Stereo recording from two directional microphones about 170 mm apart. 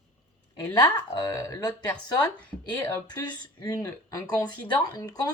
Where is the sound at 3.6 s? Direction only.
20° left (ahead or behind).